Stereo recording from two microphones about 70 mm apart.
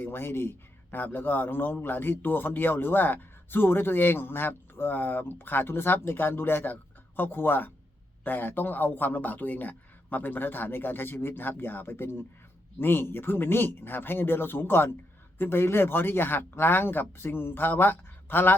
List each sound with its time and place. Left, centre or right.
0.0 s a man's voice: left